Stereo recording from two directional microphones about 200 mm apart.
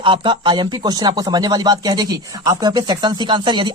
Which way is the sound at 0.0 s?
25° right (ahead or behind).